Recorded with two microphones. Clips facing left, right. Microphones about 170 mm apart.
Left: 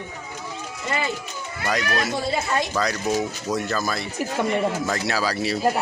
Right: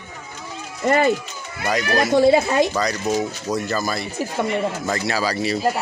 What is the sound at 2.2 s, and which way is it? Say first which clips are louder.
Speech: right 9 dB; 70° right (ahead or behind).